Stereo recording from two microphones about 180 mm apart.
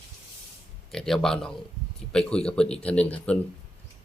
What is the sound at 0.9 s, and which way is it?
Speech, 5° left (ahead or behind).